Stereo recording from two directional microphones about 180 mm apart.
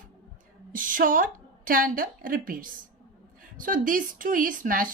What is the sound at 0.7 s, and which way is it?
A woman's voice, 50° right (ahead or behind).